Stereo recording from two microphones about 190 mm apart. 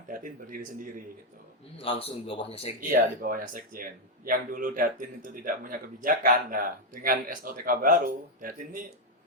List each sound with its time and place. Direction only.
0.1 s speech: 45° right (ahead or behind)
1.8 s speech: 30° left (ahead or behind)
2.9 s speech: 50° right (ahead or behind)